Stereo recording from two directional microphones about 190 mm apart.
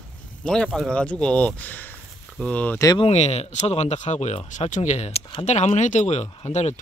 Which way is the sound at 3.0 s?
35° left (ahead or behind).